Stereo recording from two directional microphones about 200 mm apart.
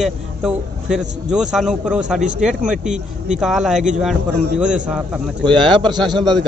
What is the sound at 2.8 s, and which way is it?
Speech, 35° right (ahead or behind).